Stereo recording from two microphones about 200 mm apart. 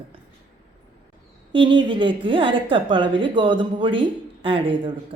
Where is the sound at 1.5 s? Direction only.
25° right (ahead or behind).